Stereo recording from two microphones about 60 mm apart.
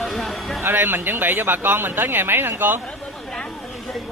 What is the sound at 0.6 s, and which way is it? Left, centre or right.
Speech, right.